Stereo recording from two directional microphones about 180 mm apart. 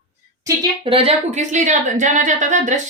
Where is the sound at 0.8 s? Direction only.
30° right (ahead or behind).